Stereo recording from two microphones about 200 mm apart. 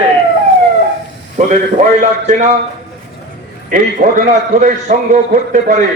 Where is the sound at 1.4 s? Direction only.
40° right (ahead or behind).